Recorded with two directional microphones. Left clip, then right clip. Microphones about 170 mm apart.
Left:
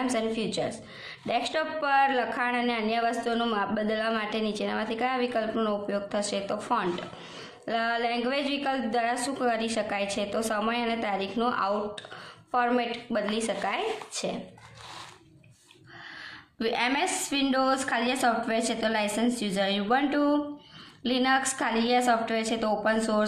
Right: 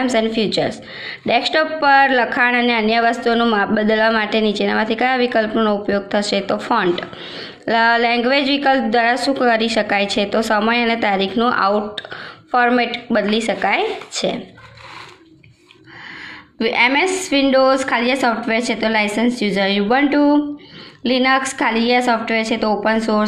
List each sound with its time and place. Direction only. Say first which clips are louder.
0.0 s a woman's voice: right 11 dB; 20° right (ahead or behind)
16.5 s a woman's voice: right 12 dB; 15° right (ahead or behind)